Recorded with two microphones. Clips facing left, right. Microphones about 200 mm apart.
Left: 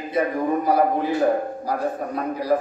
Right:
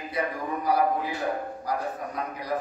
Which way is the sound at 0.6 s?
25° left (ahead or behind).